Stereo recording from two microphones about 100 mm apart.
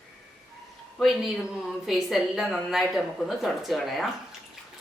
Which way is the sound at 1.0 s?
Centre (ahead or behind).